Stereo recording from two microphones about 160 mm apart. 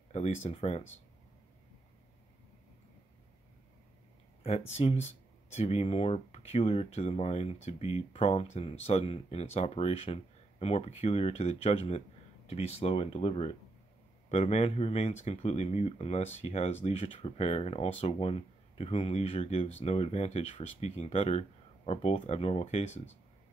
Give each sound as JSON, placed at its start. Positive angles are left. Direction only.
{"t": 0.1, "sound": "speech", "side_deg": 45}
{"t": 4.4, "sound": "speech", "side_deg": 40}